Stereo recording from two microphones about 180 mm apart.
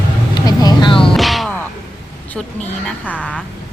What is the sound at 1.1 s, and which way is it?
Music, centre (ahead or behind).